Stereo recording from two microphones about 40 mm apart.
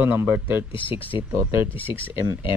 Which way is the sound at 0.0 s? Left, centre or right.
Right.